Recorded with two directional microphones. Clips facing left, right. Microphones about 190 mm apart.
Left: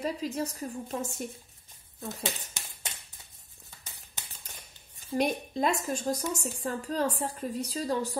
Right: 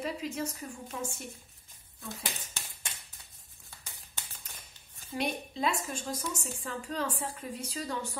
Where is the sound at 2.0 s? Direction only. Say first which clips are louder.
Left 5 dB; 20° left (ahead or behind).